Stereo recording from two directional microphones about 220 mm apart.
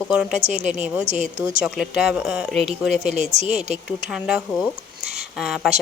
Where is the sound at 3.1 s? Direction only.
30° right (ahead or behind).